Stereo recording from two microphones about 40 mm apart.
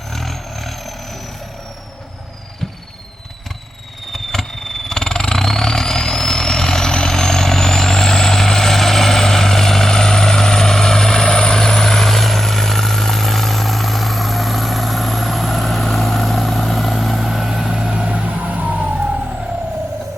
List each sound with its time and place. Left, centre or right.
0.1 s vehicle: centre
4.1 s vehicle: centre
18.1 s vehicle: right